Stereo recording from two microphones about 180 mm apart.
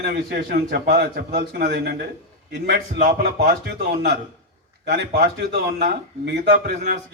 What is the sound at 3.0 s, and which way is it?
Speech, 50° right (ahead or behind).